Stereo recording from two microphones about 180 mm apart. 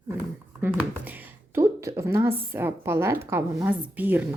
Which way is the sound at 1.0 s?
10° right (ahead or behind).